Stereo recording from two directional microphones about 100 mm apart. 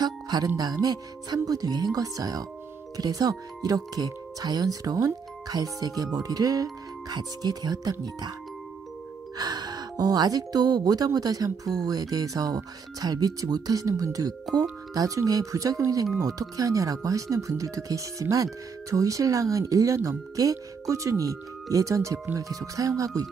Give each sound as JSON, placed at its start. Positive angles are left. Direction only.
{"t": 0.0, "sound": "music", "side_deg": -40}
{"t": 0.6, "sound": "speech", "side_deg": -40}
{"t": 9.4, "sound": "speech", "side_deg": -40}